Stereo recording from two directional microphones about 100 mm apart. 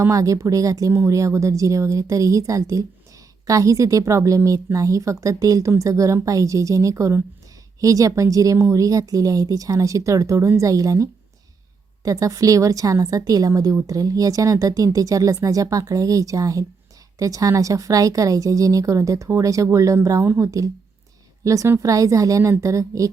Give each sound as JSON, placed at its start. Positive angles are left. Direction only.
{"t": 0.0, "sound": "speech", "side_deg": -35}